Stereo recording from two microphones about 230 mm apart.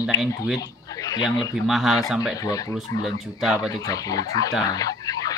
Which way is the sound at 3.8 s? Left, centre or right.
Centre.